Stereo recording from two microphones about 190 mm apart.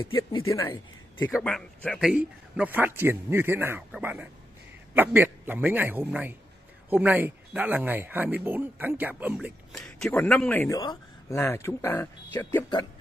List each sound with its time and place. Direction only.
0.5 s speech: 15° left (ahead or behind)
1.3 s speech: 5° left (ahead or behind)